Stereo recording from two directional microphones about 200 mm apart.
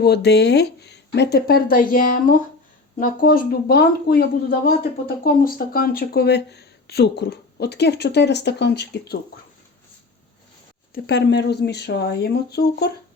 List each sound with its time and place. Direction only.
0.0 s a woman's voice: 55° left (ahead or behind)
10.9 s speech: 55° left (ahead or behind)